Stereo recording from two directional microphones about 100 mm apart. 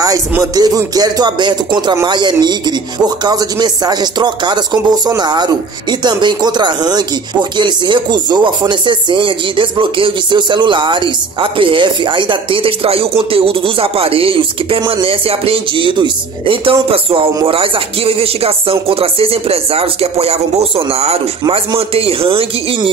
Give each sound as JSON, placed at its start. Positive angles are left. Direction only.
{"t": 0.4, "sound": "music", "side_deg": -35}
{"t": 2.0, "sound": "speech", "side_deg": -45}